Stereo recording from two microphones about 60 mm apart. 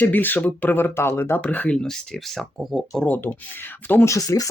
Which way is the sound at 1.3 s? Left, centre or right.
Left.